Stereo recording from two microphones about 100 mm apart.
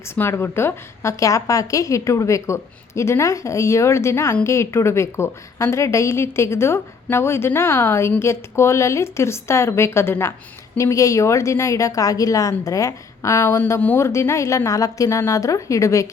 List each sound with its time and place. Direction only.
0.0 s a woman's voice: 25° left (ahead or behind)